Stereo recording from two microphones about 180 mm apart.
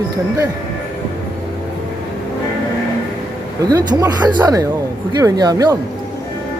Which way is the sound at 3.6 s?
20° right (ahead or behind).